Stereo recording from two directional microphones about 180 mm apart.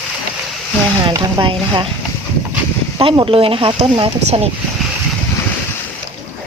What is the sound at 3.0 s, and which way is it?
Speech, 30° right (ahead or behind).